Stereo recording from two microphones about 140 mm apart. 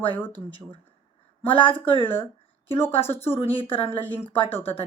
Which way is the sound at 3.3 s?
40° left (ahead or behind).